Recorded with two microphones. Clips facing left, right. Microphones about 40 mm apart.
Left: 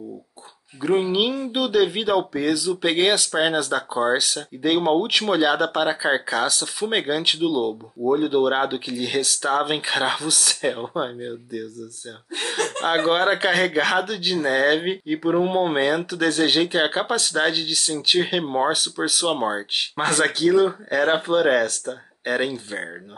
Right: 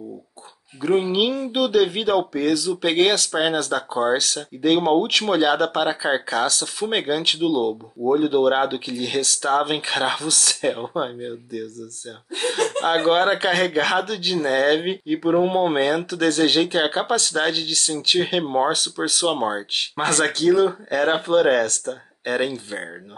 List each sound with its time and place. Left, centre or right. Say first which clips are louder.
0.7 s speech: right 1 dB; centre